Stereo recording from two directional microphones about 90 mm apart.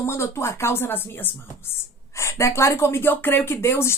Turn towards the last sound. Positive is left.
turn(degrees=30)  # may be behind; listen again after turning